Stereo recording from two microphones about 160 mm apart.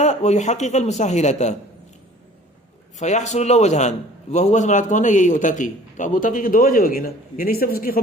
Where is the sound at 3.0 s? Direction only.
45° left (ahead or behind).